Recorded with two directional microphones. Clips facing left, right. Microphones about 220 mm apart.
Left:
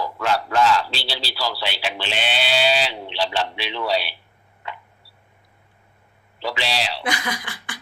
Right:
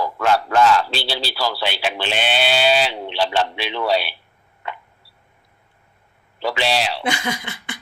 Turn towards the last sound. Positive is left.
turn(degrees=-25)  # may be behind; listen again after turning